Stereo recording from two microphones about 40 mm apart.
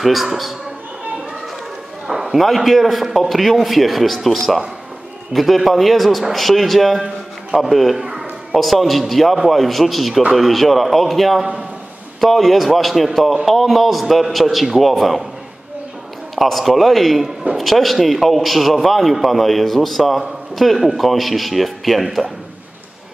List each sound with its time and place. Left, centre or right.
0.0 s a man's voice: centre
2.0 s a sound: centre
2.4 s a man's voice: centre
8.0 s a sound: centre
8.5 s a man's voice: centre
16.3 s a man's voice: centre